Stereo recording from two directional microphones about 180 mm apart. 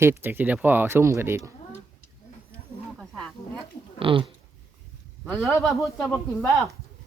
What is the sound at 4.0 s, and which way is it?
Speech, 30° right (ahead or behind).